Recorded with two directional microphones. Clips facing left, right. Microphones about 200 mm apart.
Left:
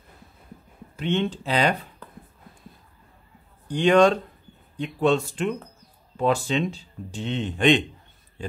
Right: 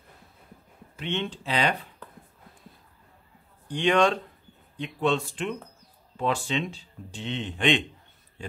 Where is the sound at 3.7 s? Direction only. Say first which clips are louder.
Left 5 dB; 40° left (ahead or behind).